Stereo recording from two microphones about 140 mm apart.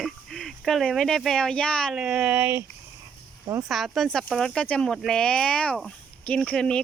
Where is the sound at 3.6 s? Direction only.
Centre (ahead or behind).